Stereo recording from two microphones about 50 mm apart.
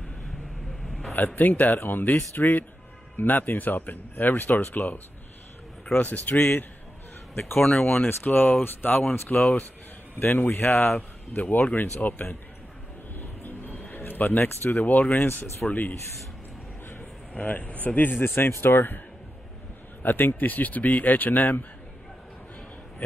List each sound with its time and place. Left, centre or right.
0.8 s a sound: centre
1.1 s speech: left
5.9 s speech: left
7.6 s speech: centre
8.0 s speech: left
10.3 s speech: left
11.0 s speech: left
13.1 s a sound: left
14.8 s speech: left
17.4 s speech: left
20.0 s speech: left